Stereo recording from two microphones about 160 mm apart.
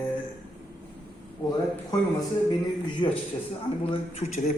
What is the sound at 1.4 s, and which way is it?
Speech, 25° left (ahead or behind).